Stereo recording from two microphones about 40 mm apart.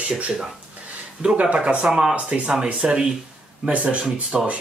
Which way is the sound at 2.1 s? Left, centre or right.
Right.